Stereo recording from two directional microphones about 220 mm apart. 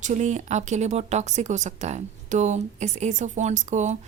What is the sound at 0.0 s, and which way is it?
A woman's voice, 35° right (ahead or behind).